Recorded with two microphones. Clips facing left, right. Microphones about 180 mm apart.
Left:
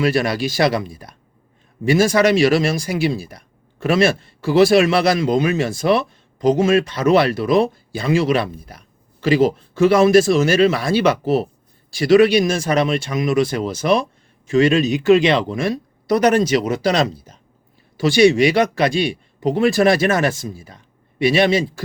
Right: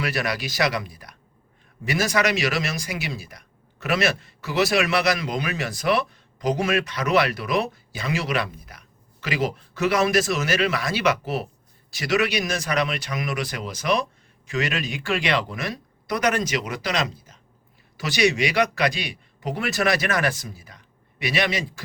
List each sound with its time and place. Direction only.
0.0 s speech: 25° left (ahead or behind)